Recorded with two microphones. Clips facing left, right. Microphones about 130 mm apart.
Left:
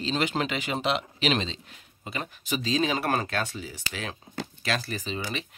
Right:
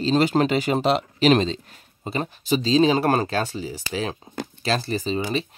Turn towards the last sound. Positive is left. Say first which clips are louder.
# right 8 dB
turn(degrees=-30)  # may be behind; listen again after turning